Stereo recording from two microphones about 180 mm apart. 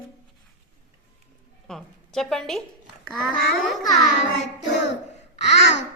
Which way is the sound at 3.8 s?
20° left (ahead or behind).